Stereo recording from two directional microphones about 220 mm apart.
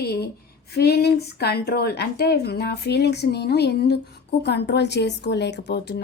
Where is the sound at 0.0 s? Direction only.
45° left (ahead or behind).